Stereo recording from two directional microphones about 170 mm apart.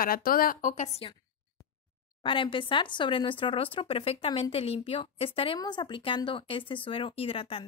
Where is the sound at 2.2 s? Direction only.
30° left (ahead or behind).